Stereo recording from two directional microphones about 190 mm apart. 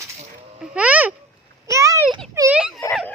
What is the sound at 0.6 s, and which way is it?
Babbling, 5° right (ahead or behind).